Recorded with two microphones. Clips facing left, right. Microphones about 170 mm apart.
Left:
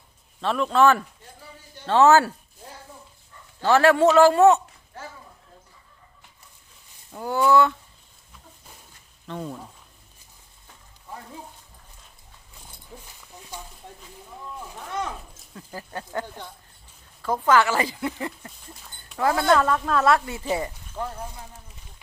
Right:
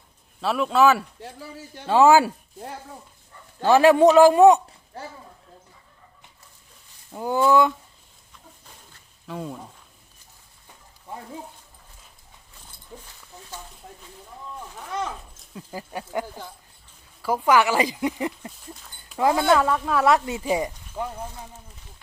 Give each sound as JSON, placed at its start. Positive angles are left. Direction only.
{"t": 0.4, "sound": "speech", "side_deg": -5}
{"t": 1.2, "sound": "speech", "side_deg": -75}
{"t": 1.9, "sound": "speech", "side_deg": -10}
{"t": 3.6, "sound": "speech", "side_deg": -15}
{"t": 7.1, "sound": "speech", "side_deg": -15}
{"t": 9.2, "sound": "speech", "side_deg": -5}
{"t": 12.9, "sound": "dog", "side_deg": 5}
{"t": 13.3, "sound": "a sound", "side_deg": 15}
{"t": 15.5, "sound": "speech", "side_deg": -10}